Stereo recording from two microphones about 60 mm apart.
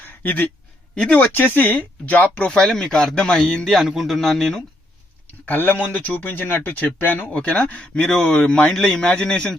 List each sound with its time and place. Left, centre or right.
0.2 s speech: left
0.9 s speech: centre
1.2 s speech: left
2.5 s speech: centre
3.8 s speech: centre
5.5 s speech: left
7.3 s speech: centre